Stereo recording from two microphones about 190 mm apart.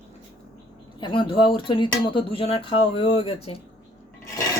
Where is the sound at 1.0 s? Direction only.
25° left (ahead or behind).